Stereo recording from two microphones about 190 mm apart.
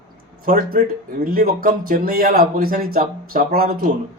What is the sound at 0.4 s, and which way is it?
Speech, 50° right (ahead or behind).